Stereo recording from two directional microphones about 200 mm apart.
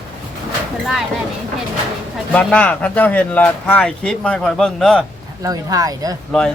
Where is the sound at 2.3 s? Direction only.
5° left (ahead or behind).